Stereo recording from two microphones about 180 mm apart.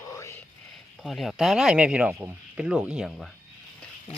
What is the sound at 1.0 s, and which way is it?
Speech, centre (ahead or behind).